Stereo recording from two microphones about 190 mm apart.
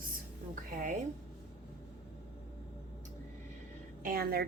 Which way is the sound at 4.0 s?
50° right (ahead or behind).